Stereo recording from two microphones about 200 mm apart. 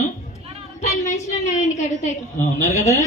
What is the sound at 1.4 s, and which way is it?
Speech, 35° left (ahead or behind).